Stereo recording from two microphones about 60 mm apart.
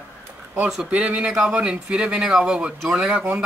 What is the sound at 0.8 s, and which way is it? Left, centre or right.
Speech, centre.